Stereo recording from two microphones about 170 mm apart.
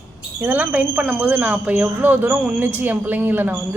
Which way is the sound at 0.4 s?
10° right (ahead or behind).